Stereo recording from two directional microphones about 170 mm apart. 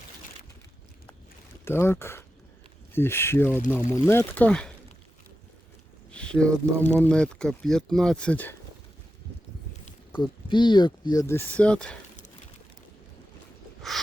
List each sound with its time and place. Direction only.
1.6 s speech: 15° left (ahead or behind)
6.1 s a sound: 5° left (ahead or behind)
6.8 s speech: 10° left (ahead or behind)
10.2 s speech: 25° left (ahead or behind); by 11.9 s 5° left (ahead or behind)